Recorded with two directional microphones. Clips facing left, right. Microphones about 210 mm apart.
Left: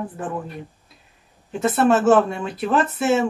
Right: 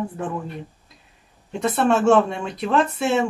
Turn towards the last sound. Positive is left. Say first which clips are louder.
# left 1 dB
turn(degrees=5)  # may be behind; listen again after turning